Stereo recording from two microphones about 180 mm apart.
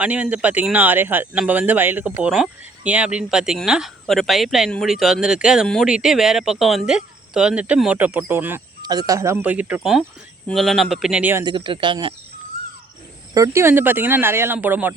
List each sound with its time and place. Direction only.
0.0 s speech: 5° right (ahead or behind)
11.4 s speech: 25° right (ahead or behind)
13.3 s speech: 15° right (ahead or behind)